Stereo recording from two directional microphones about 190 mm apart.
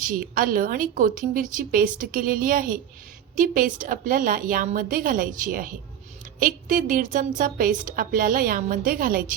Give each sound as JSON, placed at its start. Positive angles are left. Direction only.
{"t": 0.0, "sound": "a woman's voice", "side_deg": -45}